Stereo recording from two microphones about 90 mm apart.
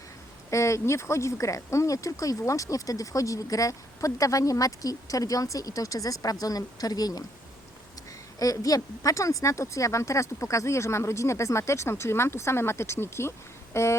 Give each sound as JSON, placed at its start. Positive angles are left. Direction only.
{"t": 0.5, "sound": "speech", "side_deg": 35}
{"t": 8.4, "sound": "speech", "side_deg": 40}